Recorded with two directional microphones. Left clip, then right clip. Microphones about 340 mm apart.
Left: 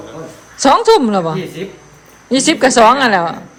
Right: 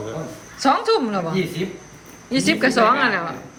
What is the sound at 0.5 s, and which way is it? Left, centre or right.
A woman's voice, centre.